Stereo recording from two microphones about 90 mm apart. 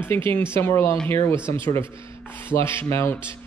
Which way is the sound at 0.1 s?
25° left (ahead or behind).